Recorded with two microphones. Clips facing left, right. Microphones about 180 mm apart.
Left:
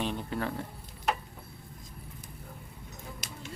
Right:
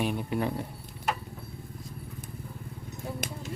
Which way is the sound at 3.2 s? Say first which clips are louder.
Right 8 dB; 55° right (ahead or behind).